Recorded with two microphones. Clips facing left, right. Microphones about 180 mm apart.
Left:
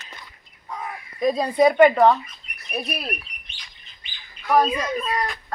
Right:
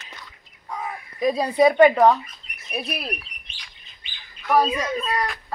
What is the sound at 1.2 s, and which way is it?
Speech, 10° right (ahead or behind).